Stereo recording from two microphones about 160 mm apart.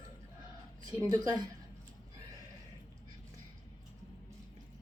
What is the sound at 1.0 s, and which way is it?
Speech, 25° right (ahead or behind).